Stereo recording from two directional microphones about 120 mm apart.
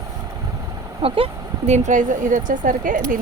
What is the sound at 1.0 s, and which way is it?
Speech, 50° right (ahead or behind).